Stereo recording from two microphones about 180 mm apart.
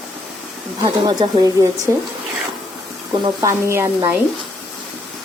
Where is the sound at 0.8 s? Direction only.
25° right (ahead or behind).